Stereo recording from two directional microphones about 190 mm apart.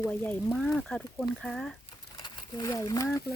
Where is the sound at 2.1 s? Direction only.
20° left (ahead or behind).